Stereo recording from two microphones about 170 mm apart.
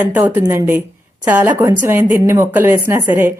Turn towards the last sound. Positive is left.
turn(degrees=-15)  # may be behind; listen again after turning